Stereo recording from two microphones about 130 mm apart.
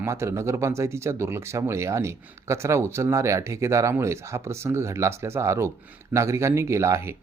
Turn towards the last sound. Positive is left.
turn(degrees=-20)  # may be behind; listen again after turning